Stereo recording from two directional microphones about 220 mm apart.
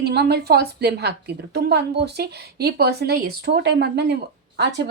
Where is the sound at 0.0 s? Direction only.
50° right (ahead or behind).